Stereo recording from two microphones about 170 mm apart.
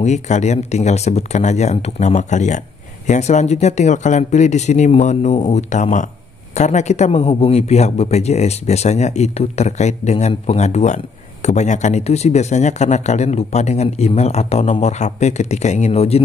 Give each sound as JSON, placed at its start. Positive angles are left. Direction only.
{"t": 0.0, "sound": "a man's voice", "side_deg": 45}